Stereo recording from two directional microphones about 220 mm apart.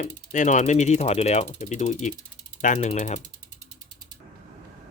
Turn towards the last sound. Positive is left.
turn(degrees=35)  # may be behind; listen again after turning